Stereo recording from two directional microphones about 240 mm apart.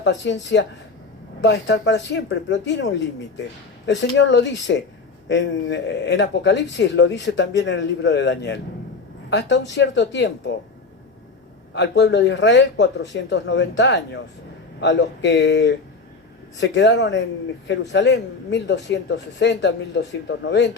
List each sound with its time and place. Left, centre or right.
0.0 s speech: left
11.7 s speech: left